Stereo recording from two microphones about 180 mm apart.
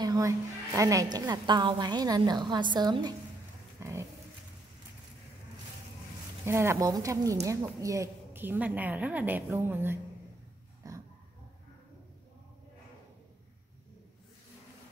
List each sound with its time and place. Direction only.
0.0 s a woman's voice: 20° right (ahead or behind)
6.4 s a woman's voice: 15° right (ahead or behind)
10.8 s a sound: 20° right (ahead or behind)